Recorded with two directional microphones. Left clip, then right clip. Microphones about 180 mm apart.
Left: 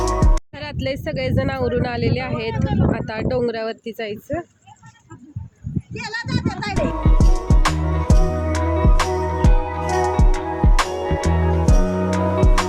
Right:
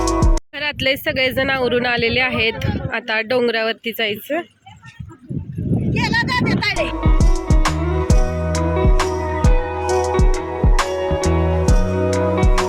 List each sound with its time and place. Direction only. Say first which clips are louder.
0.0 s speech: right 2 dB; centre (ahead or behind)
5.9 s speech: right 8 dB; 55° left (ahead or behind)
6.7 s music: right 2 dB; centre (ahead or behind)